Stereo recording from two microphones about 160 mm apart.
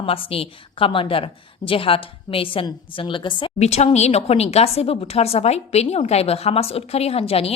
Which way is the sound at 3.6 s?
45° left (ahead or behind).